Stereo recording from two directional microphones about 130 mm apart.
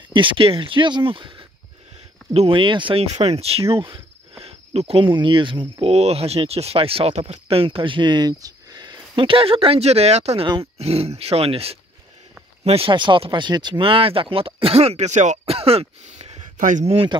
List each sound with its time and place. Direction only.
0.1 s speech: 40° right (ahead or behind); by 16.8 s 80° right
16.8 s speech: 45° right (ahead or behind)